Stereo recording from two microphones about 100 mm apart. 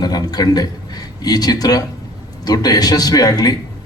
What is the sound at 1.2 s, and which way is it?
A man's voice, 40° left (ahead or behind).